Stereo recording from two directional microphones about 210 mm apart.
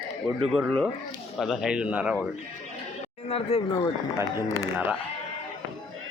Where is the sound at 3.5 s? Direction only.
30° left (ahead or behind).